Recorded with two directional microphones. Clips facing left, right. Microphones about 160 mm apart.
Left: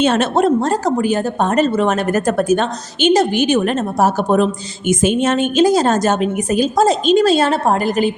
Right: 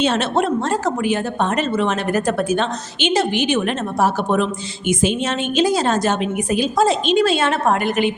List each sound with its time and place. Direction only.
0.0 s a woman's voice: 50° left (ahead or behind)